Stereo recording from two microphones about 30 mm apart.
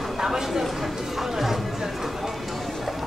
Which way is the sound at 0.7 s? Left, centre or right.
Centre.